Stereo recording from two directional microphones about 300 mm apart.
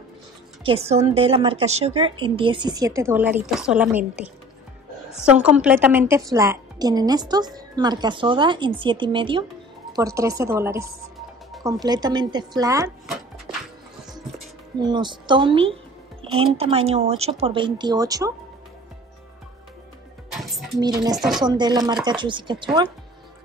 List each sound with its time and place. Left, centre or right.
0.7 s a woman's voice: centre
14.8 s a woman's voice: centre
20.8 s a woman's voice: centre